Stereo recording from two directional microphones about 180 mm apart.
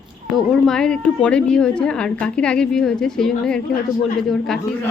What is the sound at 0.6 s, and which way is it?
A woman's voice, 5° left (ahead or behind).